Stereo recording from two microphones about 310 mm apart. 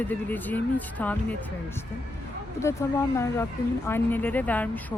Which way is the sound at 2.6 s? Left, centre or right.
Centre.